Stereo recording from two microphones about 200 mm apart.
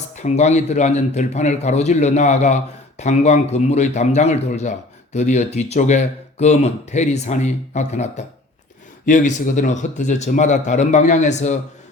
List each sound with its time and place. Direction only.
0.2 s speech: 35° left (ahead or behind)